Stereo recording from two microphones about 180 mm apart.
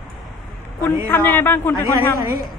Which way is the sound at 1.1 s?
10° left (ahead or behind).